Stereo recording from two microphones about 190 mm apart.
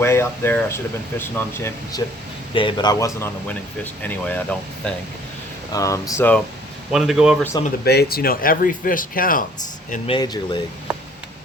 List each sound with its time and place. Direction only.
0.0 s speech: 15° left (ahead or behind)
2.5 s speech: 25° left (ahead or behind)
6.9 s speech: centre (ahead or behind)
7.9 s speech: 55° left (ahead or behind)
10.1 s speech: 20° left (ahead or behind)